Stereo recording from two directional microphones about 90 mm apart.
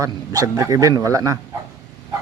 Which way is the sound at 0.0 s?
40° right (ahead or behind).